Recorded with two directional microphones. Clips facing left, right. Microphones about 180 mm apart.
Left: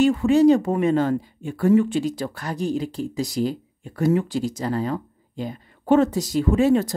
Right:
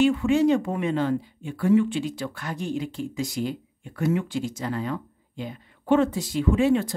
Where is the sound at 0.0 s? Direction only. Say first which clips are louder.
Left 4 dB; 40° left (ahead or behind).